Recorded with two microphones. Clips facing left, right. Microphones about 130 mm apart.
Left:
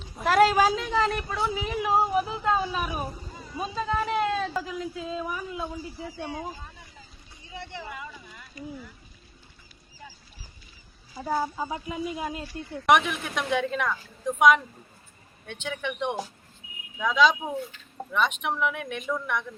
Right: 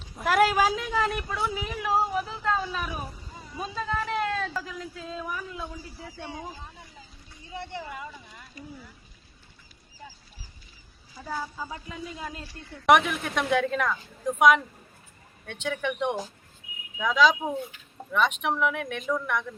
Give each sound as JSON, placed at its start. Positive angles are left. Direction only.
{"t": 0.0, "sound": "speech", "side_deg": -5}
{"t": 3.6, "sound": "a woman's voice", "side_deg": 5}
{"t": 7.5, "sound": "speech", "side_deg": -45}
{"t": 11.2, "sound": "speech", "side_deg": 30}
{"t": 12.8, "sound": "a woman's voice", "side_deg": 0}